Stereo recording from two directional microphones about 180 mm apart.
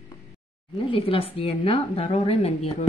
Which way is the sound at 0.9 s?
30° left (ahead or behind).